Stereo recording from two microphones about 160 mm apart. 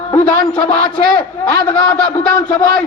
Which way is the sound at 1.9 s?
20° left (ahead or behind).